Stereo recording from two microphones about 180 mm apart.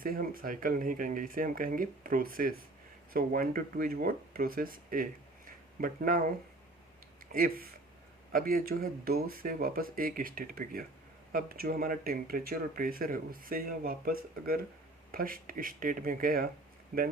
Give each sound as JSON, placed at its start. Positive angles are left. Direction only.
{"t": 0.0, "sound": "speech", "side_deg": -50}
{"t": 7.3, "sound": "speech", "side_deg": -55}